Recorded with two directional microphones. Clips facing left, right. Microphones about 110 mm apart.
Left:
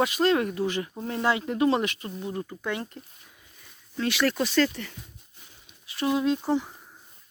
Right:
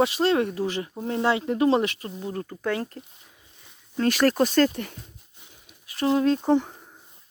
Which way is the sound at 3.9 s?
45° right (ahead or behind).